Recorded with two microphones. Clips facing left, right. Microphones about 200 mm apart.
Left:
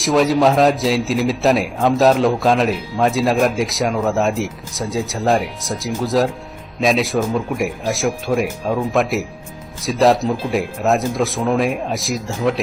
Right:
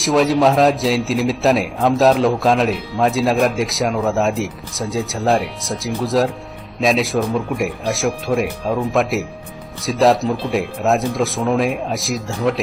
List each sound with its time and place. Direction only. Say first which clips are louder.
0.0 s a man's voice: even; centre (ahead or behind)